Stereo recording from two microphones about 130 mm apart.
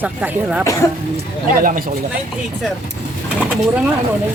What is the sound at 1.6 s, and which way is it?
Speech, 90° right.